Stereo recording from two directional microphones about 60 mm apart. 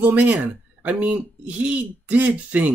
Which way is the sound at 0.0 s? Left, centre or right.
Right.